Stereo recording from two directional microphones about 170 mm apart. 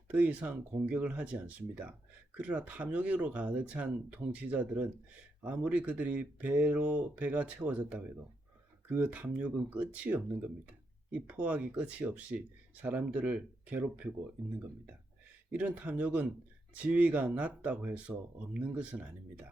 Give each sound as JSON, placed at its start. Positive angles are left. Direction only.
{"t": 0.1, "sound": "speech", "side_deg": -10}
{"t": 15.4, "sound": "speech", "side_deg": -10}